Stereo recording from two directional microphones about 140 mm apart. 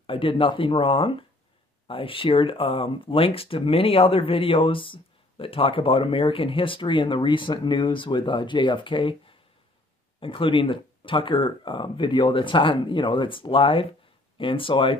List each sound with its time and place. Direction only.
0.0 s speech: 40° left (ahead or behind)
10.2 s speech: 40° left (ahead or behind)